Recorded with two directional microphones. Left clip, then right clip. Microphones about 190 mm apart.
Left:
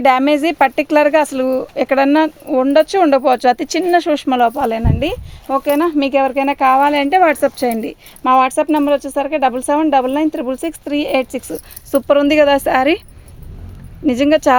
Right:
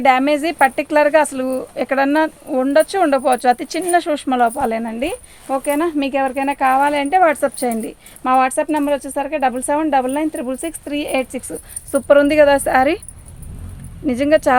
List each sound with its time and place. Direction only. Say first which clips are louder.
0.0 s speech: left 2 dB; 45° left (ahead or behind)
14.1 s speech: left 2 dB; 45° left (ahead or behind)